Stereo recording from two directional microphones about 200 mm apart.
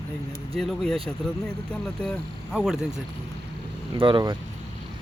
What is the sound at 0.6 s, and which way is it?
Speech, centre (ahead or behind).